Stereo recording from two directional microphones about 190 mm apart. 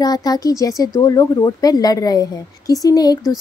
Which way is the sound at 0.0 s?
20° left (ahead or behind).